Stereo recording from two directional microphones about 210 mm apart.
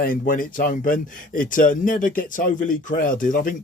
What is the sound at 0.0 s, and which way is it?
Speech, 40° left (ahead or behind).